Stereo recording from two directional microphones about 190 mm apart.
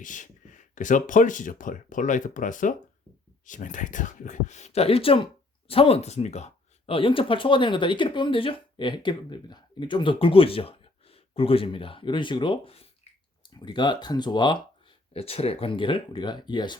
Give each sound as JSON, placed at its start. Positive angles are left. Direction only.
{"t": 0.0, "sound": "speech", "side_deg": 40}